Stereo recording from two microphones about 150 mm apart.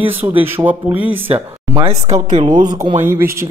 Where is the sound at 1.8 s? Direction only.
50° right (ahead or behind).